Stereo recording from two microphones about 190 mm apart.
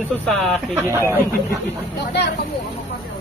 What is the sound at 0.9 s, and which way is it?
Speech, 15° right (ahead or behind).